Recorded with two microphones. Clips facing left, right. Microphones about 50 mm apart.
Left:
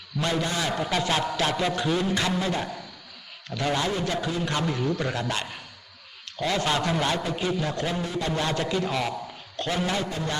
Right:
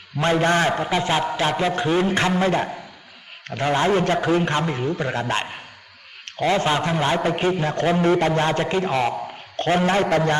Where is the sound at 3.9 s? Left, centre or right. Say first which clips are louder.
Right 9 dB; right.